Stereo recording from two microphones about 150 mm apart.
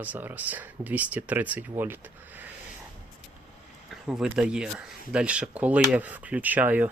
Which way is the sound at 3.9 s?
5° right (ahead or behind).